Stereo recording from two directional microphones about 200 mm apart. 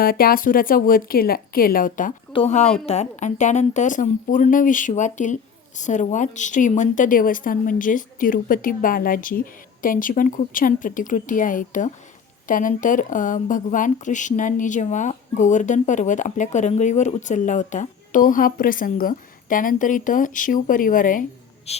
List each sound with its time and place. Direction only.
0.0 s speech: 50° left (ahead or behind)
2.3 s a woman's voice: 30° left (ahead or behind)
21.7 s a woman's voice: 30° left (ahead or behind)